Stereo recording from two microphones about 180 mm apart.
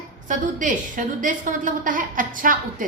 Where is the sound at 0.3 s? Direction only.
45° right (ahead or behind).